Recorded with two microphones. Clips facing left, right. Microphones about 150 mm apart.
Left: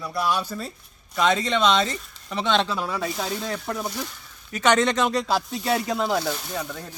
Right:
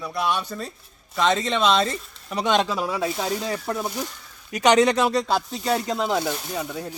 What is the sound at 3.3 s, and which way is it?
Sizzle, 10° right (ahead or behind).